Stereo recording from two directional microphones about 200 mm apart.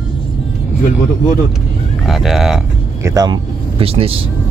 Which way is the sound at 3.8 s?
30° right (ahead or behind).